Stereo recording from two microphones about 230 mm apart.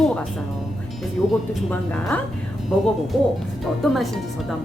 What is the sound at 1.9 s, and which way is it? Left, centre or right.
A woman's voice, centre.